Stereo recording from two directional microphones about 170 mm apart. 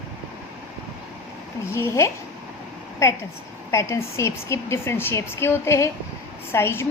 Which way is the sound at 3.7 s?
15° left (ahead or behind).